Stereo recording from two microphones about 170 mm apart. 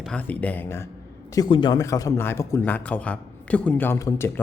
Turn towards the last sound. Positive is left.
turn(degrees=15)  # may be behind; listen again after turning